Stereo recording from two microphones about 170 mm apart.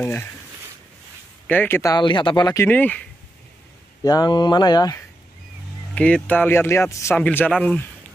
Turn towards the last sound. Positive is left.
turn(degrees=5)  # may be behind; listen again after turning